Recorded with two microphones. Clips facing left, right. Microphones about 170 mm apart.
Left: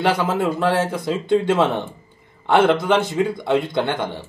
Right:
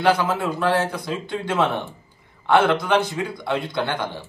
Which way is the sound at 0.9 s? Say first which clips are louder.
Left 8 dB; 25° left (ahead or behind).